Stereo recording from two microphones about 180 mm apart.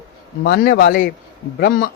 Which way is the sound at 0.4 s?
55° left (ahead or behind).